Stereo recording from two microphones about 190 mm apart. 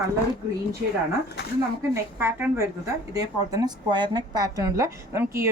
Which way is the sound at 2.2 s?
15° right (ahead or behind).